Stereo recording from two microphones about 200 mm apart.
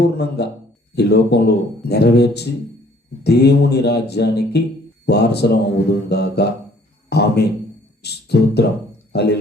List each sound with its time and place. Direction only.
0.0 s mantra: 55° left (ahead or behind)
8.0 s speech: 55° left (ahead or behind)
9.1 s mantra: 55° left (ahead or behind)